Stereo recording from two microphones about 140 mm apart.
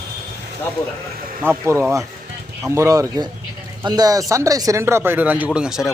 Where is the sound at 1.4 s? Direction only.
15° right (ahead or behind).